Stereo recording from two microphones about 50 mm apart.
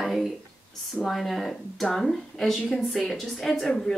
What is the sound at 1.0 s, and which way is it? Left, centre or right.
Speech, centre.